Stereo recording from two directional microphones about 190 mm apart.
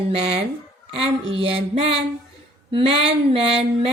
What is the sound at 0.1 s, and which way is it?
Mantra, 30° right (ahead or behind).